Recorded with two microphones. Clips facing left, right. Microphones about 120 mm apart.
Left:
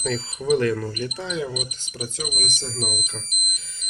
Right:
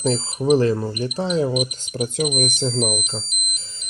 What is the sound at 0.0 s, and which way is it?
Speech, 30° right (ahead or behind).